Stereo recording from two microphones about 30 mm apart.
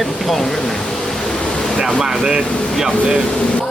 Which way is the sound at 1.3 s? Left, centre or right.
Left.